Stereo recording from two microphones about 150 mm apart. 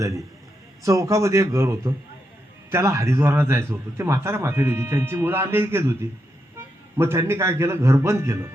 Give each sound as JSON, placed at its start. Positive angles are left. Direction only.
{"t": 0.8, "sound": "a man's voice", "side_deg": -20}